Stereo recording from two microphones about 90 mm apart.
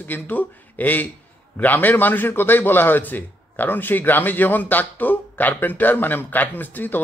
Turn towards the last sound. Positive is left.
turn(degrees=20)  # may be behind; listen again after turning